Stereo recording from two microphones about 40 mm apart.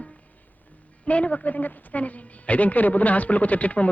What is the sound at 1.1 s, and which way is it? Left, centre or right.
A woman's voice, left.